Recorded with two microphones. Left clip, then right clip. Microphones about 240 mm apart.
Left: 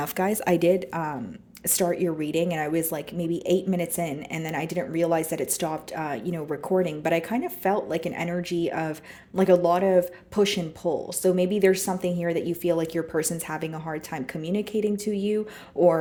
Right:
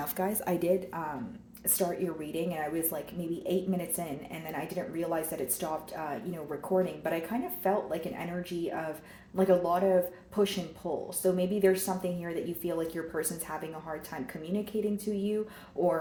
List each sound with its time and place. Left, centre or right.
0.0 s a woman's voice: left
2.3 s speech: left